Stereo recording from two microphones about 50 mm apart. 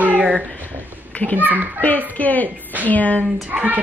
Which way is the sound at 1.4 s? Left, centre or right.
Right.